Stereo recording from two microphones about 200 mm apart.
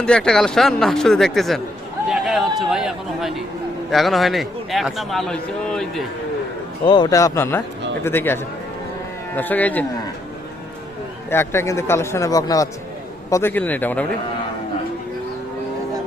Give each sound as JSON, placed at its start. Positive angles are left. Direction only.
{"t": 0.0, "sound": "a man's voice", "side_deg": 5}
{"t": 6.8, "sound": "speech", "side_deg": 20}
{"t": 11.3, "sound": "speech", "side_deg": 10}